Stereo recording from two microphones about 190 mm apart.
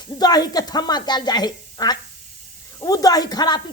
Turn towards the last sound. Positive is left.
turn(degrees=20)  # may be behind; listen again after turning